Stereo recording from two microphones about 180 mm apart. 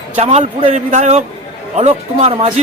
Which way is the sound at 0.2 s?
40° right (ahead or behind).